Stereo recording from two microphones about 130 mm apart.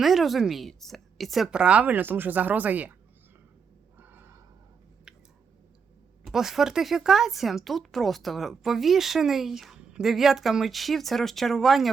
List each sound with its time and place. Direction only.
0.0 s a woman's voice: centre (ahead or behind)
3.9 s a sound: 15° right (ahead or behind)
6.2 s speech: centre (ahead or behind)